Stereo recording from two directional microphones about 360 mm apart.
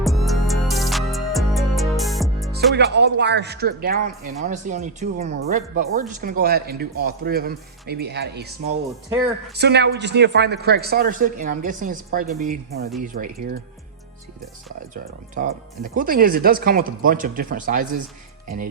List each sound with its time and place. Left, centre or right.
0.0 s music: centre
2.7 s speech: right
9.6 s speech: right
14.9 s speech: right